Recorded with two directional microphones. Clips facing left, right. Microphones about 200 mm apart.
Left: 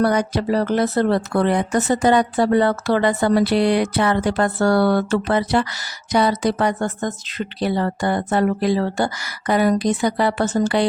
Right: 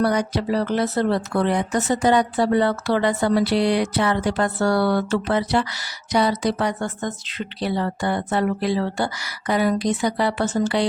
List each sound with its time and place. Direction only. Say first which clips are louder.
0.0 s speech: left 2 dB; 50° left (ahead or behind)